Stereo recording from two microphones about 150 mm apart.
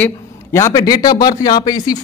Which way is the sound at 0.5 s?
20° left (ahead or behind).